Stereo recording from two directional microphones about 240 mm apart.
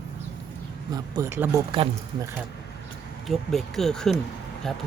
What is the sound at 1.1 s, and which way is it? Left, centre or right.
Speech, centre.